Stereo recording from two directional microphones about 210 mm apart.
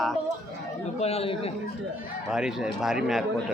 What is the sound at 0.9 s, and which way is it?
Speech, 30° left (ahead or behind).